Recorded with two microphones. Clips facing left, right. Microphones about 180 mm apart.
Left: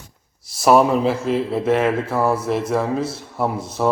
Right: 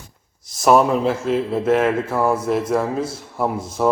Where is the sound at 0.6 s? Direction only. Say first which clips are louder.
Even; centre (ahead or behind).